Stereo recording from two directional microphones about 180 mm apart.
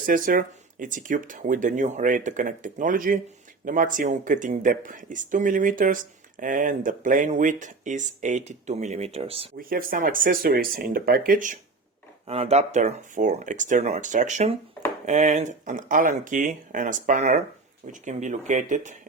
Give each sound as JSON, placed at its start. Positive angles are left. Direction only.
{"t": 0.0, "sound": "speech", "side_deg": -50}
{"t": 9.6, "sound": "speech", "side_deg": -55}
{"t": 12.3, "sound": "speech", "side_deg": -35}